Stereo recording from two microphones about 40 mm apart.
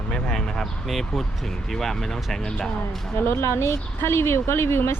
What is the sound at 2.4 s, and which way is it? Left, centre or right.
Speech, left.